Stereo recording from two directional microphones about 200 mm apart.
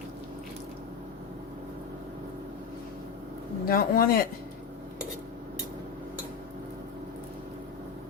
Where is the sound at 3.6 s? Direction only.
45° left (ahead or behind).